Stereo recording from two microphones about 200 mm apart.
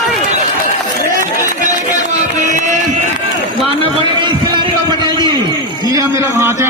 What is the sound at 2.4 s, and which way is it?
Music, 35° right (ahead or behind).